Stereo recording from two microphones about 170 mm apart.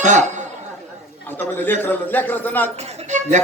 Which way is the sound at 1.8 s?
10° left (ahead or behind).